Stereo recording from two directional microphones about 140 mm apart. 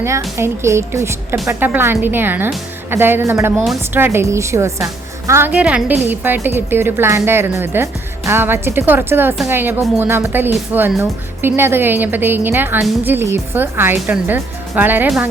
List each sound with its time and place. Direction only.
0.0 s a woman's voice: 20° right (ahead or behind)